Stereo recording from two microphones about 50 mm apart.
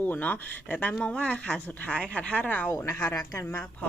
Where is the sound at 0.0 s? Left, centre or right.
Left.